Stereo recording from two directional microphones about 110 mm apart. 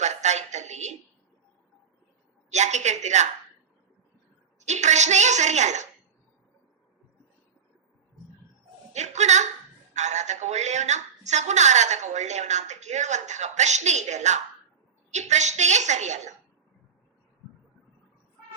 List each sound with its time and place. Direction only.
0.0 s a sound: 90° right
2.5 s a woman's voice: 90° right
4.6 s a woman's voice: 90° right
8.9 s a woman's voice: 90° right